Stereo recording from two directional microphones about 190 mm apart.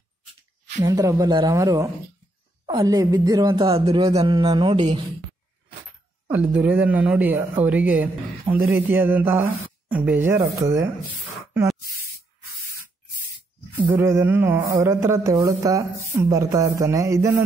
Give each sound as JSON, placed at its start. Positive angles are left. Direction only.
{"t": 0.8, "sound": "speech", "side_deg": -20}
{"t": 6.2, "sound": "speech", "side_deg": -10}
{"t": 13.9, "sound": "speech", "side_deg": -15}